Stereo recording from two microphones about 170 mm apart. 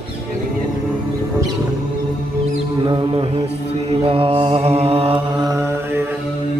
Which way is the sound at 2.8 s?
25° right (ahead or behind).